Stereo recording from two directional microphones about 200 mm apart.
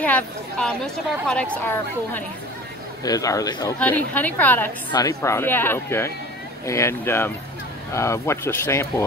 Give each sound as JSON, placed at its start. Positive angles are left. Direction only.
{"t": 0.0, "sound": "a woman's voice", "side_deg": 5}
{"t": 3.8, "sound": "speech", "side_deg": 10}